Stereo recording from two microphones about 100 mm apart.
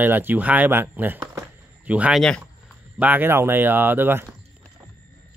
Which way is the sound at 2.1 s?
5° left (ahead or behind).